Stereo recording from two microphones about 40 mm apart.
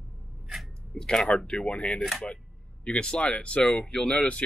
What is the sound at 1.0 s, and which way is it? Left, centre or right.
Speech, centre.